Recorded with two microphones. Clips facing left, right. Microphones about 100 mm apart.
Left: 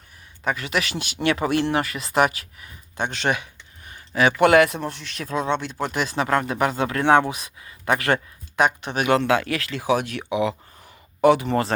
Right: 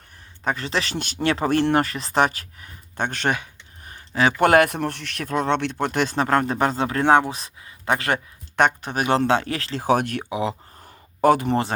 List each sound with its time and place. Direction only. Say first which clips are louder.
0.4 s speech: even; 35° right (ahead or behind)
0.9 s speech: even; 40° right (ahead or behind)
1.5 s speech: right 2 dB; 50° right (ahead or behind)
3.3 s a sound: even; 40° right (ahead or behind)
4.4 s speech: left 1 dB; 45° right (ahead or behind)
4.8 s speech: right 3 dB; 65° right (ahead or behind)
5.8 s speech: right 2 dB; 55° right (ahead or behind)
6.7 s speech: even; 25° right (ahead or behind)
8.8 s speech: even; 40° right (ahead or behind)
9.8 s speech: right 3 dB; 50° right (ahead or behind)
10.2 s a sound: left 2 dB; 35° right (ahead or behind)